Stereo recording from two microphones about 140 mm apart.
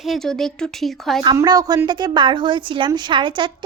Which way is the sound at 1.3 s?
25° right (ahead or behind).